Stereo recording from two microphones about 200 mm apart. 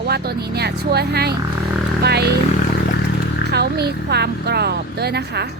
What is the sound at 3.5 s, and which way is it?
Speech, 55° right (ahead or behind).